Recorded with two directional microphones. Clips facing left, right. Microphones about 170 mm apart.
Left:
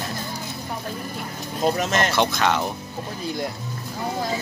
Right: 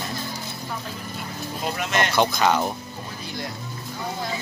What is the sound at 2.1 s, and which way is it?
Speech, centre (ahead or behind).